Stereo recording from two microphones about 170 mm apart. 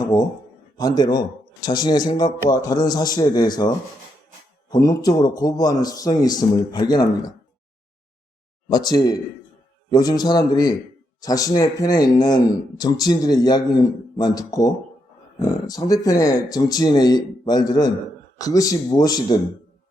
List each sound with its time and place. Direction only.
0.8 s speech: 25° left (ahead or behind)
8.7 s speech: 25° left (ahead or behind)